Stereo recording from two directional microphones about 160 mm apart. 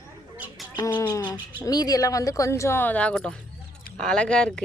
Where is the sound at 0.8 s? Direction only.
25° left (ahead or behind).